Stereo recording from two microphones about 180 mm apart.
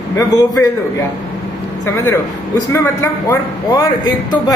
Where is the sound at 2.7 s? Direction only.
20° left (ahead or behind).